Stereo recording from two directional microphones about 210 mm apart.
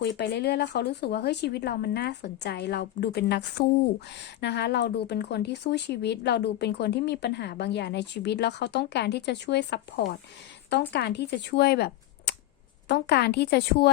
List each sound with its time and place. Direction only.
0.2 s a woman's voice: 50° left (ahead or behind)